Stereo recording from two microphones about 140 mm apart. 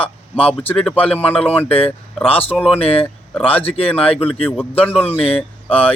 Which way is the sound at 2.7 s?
45° left (ahead or behind).